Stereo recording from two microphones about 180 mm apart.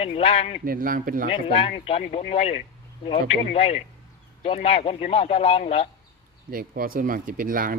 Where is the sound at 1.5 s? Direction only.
35° left (ahead or behind).